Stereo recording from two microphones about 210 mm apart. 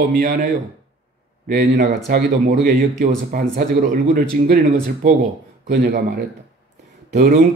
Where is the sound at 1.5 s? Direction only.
50° right (ahead or behind).